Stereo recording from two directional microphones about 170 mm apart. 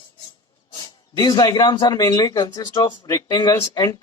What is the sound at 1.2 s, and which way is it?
Speech, 25° left (ahead or behind).